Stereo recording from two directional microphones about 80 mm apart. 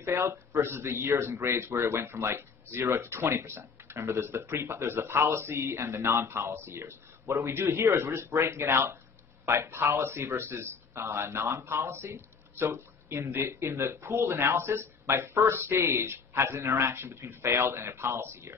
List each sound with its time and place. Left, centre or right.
0.0 s speech: right